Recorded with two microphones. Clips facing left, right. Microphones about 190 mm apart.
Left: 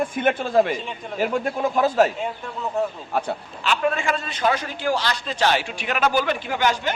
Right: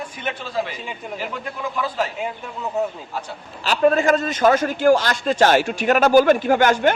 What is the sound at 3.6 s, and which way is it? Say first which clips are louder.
A man's voice: right 6 dB; 40° right (ahead or behind).